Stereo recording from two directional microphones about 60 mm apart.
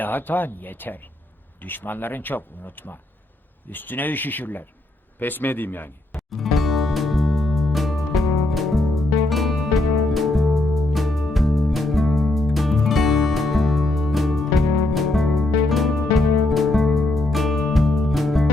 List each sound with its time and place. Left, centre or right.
0.0 s speech: left
6.3 s music: centre